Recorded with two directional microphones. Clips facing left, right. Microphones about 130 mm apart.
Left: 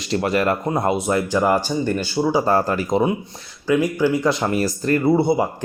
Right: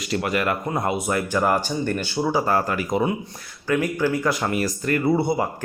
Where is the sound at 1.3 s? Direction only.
15° left (ahead or behind).